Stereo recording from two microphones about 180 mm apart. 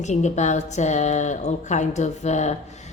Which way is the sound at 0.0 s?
40° left (ahead or behind).